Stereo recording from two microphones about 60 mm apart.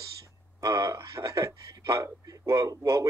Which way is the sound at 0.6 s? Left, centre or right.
Right.